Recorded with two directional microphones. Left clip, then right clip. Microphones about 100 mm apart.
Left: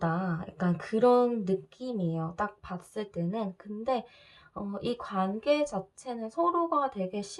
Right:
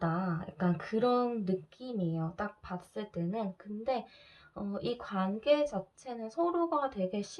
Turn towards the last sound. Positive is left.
turn(degrees=40)  # may be behind; listen again after turning